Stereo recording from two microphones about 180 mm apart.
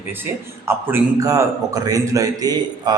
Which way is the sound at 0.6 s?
15° right (ahead or behind).